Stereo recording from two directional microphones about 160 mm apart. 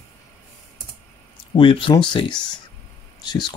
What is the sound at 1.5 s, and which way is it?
Speech, 35° left (ahead or behind).